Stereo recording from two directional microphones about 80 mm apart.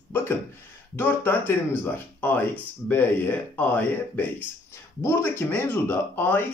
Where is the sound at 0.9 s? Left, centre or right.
Left.